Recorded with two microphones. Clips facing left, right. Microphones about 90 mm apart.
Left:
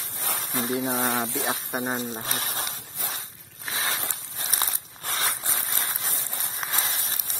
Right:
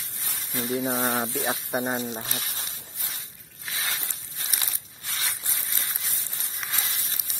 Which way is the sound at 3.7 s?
35° left (ahead or behind).